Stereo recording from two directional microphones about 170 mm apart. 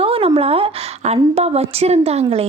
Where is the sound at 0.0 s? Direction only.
35° right (ahead or behind).